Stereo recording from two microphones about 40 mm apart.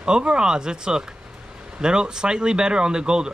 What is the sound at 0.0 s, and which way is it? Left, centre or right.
Speech, right.